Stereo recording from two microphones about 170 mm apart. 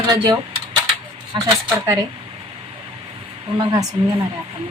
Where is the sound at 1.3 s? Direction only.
25° right (ahead or behind).